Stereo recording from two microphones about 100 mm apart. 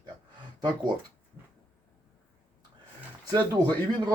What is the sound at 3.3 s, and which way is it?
Speech, 45° right (ahead or behind).